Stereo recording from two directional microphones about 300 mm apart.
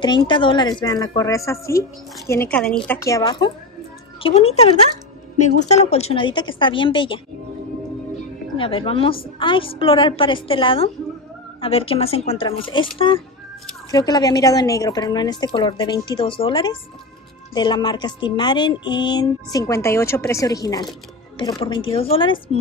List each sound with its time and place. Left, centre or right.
0.0 s a woman's voice: centre
8.5 s a woman's voice: centre